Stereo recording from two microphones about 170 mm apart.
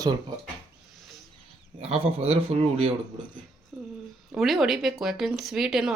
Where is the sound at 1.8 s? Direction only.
35° right (ahead or behind).